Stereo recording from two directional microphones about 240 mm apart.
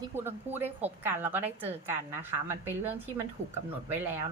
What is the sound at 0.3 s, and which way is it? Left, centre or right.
A woman's voice, centre.